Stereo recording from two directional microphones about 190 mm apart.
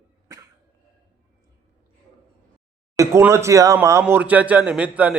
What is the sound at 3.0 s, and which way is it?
A man's voice, 15° right (ahead or behind).